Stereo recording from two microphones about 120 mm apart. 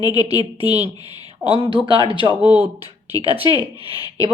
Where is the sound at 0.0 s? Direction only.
35° left (ahead or behind).